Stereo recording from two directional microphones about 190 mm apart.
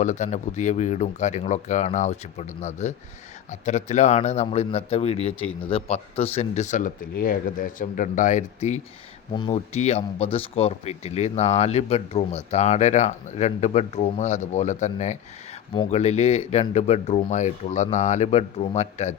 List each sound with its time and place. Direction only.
0.0 s speech: 40° left (ahead or behind)